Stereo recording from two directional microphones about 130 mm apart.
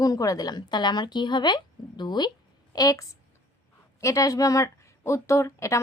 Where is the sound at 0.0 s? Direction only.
30° left (ahead or behind).